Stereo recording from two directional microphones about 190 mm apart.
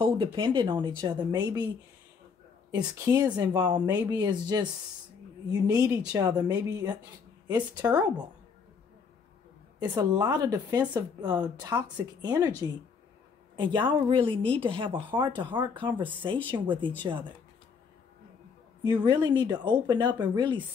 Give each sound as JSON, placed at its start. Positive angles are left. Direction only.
{"t": 0.0, "sound": "speech", "side_deg": -25}
{"t": 2.8, "sound": "speech", "side_deg": -10}
{"t": 9.9, "sound": "speech", "side_deg": -20}
{"t": 18.9, "sound": "speech", "side_deg": -25}